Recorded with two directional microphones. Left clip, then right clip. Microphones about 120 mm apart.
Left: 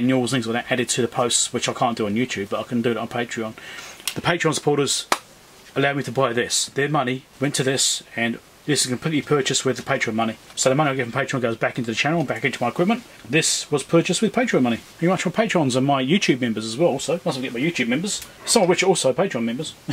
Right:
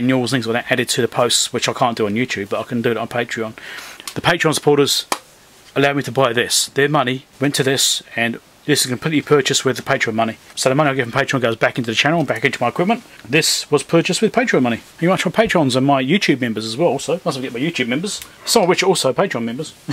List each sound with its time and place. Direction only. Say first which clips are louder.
0.0 s speech: right 3 dB; 35° right (ahead or behind)